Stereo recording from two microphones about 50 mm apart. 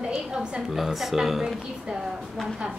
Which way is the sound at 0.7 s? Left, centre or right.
Centre.